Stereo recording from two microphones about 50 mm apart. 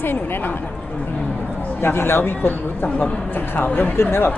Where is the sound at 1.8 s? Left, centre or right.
Left.